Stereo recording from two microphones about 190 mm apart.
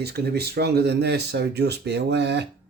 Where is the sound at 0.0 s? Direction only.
55° right (ahead or behind).